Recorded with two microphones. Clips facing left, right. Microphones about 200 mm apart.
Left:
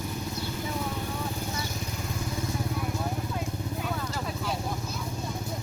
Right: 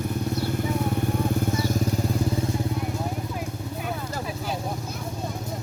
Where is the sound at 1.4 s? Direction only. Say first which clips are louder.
Right 10 dB; 40° right (ahead or behind).